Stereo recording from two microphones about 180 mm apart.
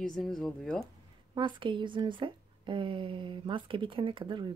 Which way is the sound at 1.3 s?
25° right (ahead or behind).